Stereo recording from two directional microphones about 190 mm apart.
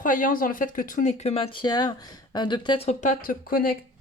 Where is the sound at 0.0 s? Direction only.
45° left (ahead or behind).